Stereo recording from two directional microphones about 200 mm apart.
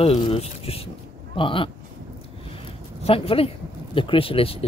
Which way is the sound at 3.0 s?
30° left (ahead or behind).